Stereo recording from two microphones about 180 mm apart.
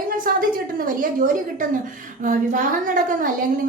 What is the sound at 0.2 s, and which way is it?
A woman's voice, 50° right (ahead or behind).